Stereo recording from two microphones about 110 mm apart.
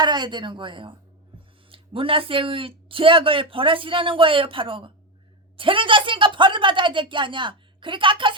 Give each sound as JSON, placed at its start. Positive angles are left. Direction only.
{"t": 0.0, "sound": "a man's voice", "side_deg": -45}